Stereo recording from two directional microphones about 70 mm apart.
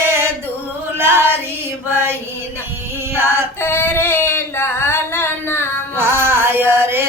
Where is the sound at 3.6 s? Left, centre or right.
Left.